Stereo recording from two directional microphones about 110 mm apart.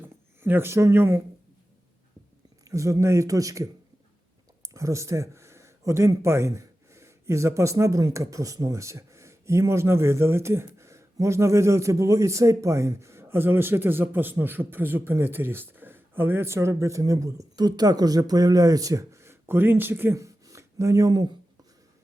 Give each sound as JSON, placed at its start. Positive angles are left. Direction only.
{"t": 0.0, "sound": "speech", "side_deg": -20}
{"t": 2.6, "sound": "speech", "side_deg": -30}